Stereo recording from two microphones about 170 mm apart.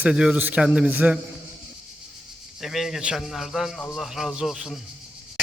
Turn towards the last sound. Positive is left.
turn(degrees=0)  # may be behind; listen again after turning